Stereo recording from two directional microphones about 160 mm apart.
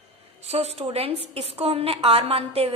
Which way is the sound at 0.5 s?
40° right (ahead or behind).